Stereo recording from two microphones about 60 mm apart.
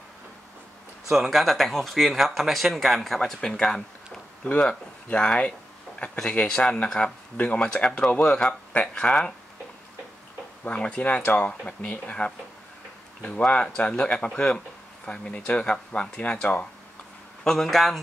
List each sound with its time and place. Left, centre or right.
1.1 s speech: centre
10.6 s speech: centre
17.4 s a man's voice: centre